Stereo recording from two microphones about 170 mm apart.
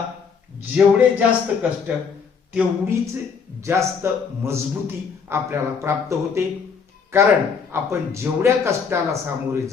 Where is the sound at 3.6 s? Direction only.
15° right (ahead or behind).